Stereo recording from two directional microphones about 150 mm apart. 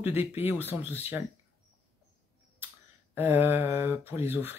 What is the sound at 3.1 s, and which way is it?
Speech, 15° right (ahead or behind).